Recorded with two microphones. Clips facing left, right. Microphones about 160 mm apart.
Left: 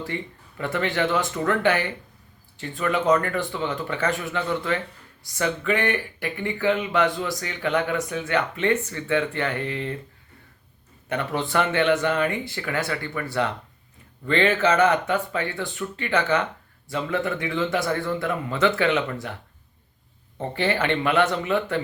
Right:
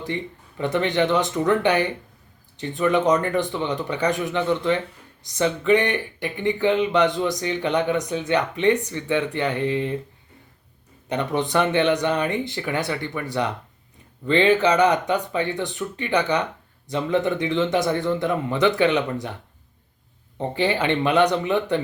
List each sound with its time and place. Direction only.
0.0 s speech: 20° right (ahead or behind)
11.1 s speech: 20° right (ahead or behind)
20.4 s speech: 15° right (ahead or behind)